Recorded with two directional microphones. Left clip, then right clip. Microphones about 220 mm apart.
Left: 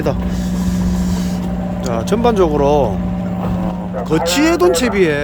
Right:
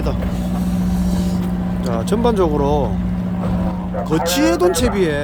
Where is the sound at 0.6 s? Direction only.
15° left (ahead or behind).